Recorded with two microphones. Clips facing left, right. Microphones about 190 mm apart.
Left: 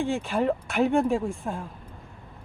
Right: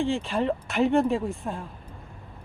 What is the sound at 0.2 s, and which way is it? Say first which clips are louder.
Speech: left 1 dB; centre (ahead or behind).